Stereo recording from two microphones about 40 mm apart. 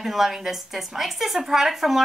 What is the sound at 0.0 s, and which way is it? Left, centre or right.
A woman's voice, centre.